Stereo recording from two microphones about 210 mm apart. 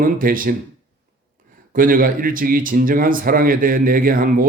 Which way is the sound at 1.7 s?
40° right (ahead or behind).